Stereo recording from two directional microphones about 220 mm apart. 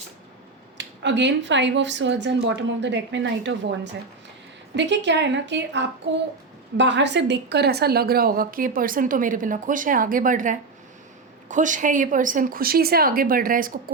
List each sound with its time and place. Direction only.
0.8 s speech: 55° right (ahead or behind)
4.7 s a woman's voice: 55° right (ahead or behind)